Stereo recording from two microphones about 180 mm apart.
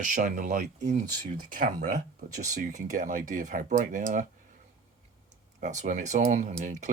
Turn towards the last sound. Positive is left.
turn(degrees=-45)  # may be behind; listen again after turning